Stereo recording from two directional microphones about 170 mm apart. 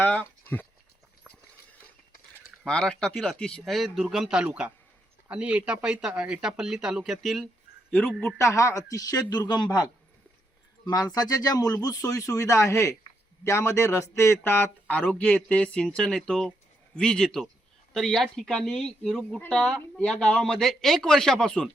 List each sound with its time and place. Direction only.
0.0 s speech: 10° left (ahead or behind)
2.6 s speech: 5° left (ahead or behind)
8.4 s speech: 15° left (ahead or behind)
10.8 s a man's voice: 20° left (ahead or behind); by 21.7 s 5° left (ahead or behind)